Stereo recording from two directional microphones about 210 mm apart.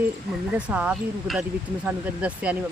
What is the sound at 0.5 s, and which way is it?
Speech, 5° right (ahead or behind).